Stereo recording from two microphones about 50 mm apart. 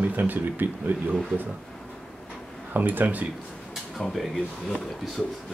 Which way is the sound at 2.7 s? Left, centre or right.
Right.